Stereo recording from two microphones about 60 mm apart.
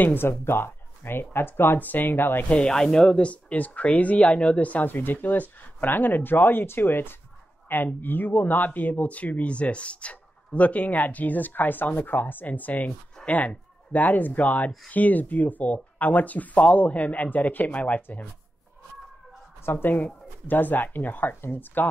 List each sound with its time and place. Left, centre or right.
0.0 s speech: left
2.5 s speech: centre; by 18.3 s left
19.6 s speech: left